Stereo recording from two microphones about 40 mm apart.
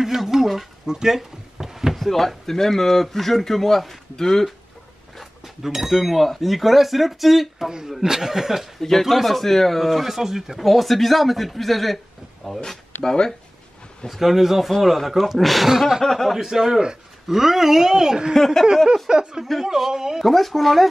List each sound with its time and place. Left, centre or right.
0.0 s a sound: centre
2.0 s speech: centre
5.7 s speech: centre
9.0 s speech: centre
10.6 s speech: centre
13.0 s speech: centre
14.0 s speech: centre
15.7 s speech: centre
16.0 s speech: centre
16.3 s speech: centre
18.3 s speech: centre
19.0 s speech: centre
20.2 s speech: centre